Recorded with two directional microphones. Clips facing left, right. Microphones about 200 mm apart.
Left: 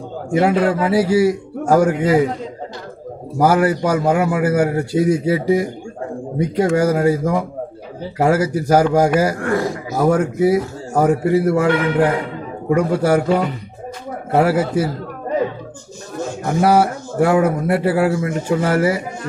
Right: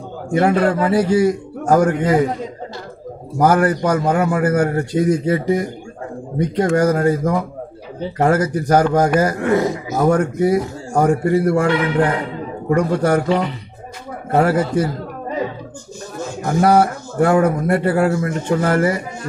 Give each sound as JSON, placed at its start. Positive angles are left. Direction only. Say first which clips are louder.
{"t": 0.3, "sound": "a man's voice", "louder": "even", "side_deg": 5}
{"t": 3.3, "sound": "a man's voice", "louder": "even", "side_deg": 10}
{"t": 9.4, "sound": "a sound", "louder": "right 3 dB", "side_deg": -20}
{"t": 9.9, "sound": "a man's voice", "louder": "even", "side_deg": 5}
{"t": 16.4, "sound": "a man's voice", "louder": "right 1 dB", "side_deg": 5}